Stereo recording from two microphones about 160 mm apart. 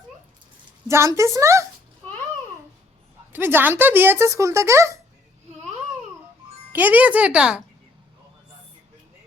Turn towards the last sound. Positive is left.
turn(degrees=-5)  # may be behind; listen again after turning